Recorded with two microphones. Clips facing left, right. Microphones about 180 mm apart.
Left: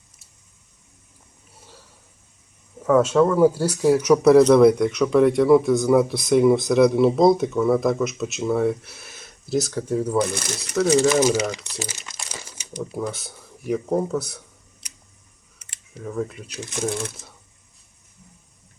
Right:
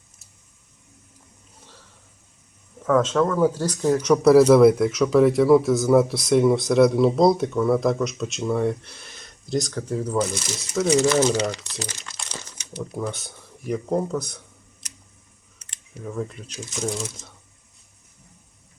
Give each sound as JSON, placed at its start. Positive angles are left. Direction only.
{"t": 2.8, "sound": "speech", "side_deg": 10}
{"t": 10.2, "sound": "speech", "side_deg": 60}
{"t": 10.6, "sound": "speech", "side_deg": 0}
{"t": 11.1, "sound": "speech", "side_deg": 10}
{"t": 15.6, "sound": "a sound", "side_deg": 10}
{"t": 16.0, "sound": "speech", "side_deg": 0}
{"t": 16.5, "sound": "speech", "side_deg": 60}